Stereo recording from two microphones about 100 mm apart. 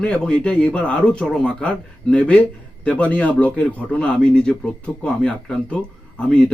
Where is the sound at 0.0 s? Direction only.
15° left (ahead or behind).